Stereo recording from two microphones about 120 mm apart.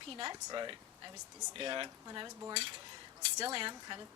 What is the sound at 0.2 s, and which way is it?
A woman's voice, 35° right (ahead or behind).